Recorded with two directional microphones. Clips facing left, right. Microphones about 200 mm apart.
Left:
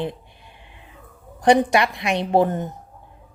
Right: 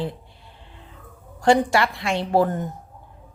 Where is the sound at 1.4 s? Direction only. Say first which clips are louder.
Left 2 dB; 20° left (ahead or behind).